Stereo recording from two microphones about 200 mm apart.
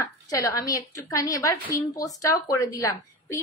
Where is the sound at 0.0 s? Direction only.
15° left (ahead or behind).